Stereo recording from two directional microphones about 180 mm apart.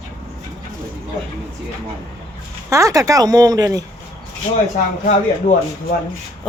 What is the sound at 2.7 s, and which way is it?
Speech, 20° right (ahead or behind).